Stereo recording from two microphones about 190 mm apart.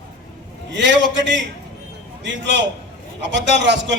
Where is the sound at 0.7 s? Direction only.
70° right (ahead or behind).